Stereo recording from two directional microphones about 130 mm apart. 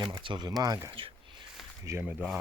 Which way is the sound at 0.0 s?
35° right (ahead or behind).